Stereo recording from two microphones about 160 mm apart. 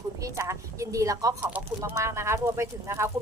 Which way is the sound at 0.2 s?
20° right (ahead or behind).